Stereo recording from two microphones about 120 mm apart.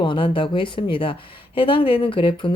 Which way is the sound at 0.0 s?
45° left (ahead or behind).